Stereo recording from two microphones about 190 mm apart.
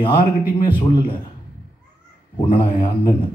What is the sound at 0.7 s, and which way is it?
Speech, 25° left (ahead or behind).